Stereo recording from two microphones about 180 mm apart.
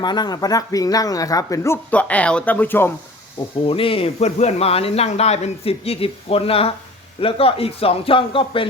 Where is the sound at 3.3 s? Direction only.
30° left (ahead or behind).